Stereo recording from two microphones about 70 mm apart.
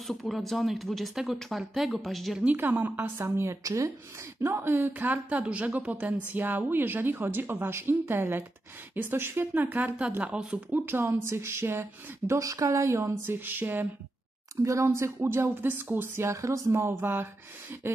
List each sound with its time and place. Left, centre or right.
0.0 s speech: centre
2.5 s speech: right
4.4 s speech: right; by 10.8 s centre
10.9 s speech: right
12.4 s speech: right
14.6 s speech: right